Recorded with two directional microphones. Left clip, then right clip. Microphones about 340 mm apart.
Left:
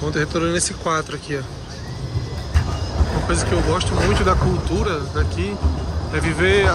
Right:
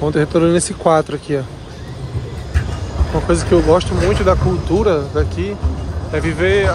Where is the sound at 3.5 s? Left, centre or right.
Centre.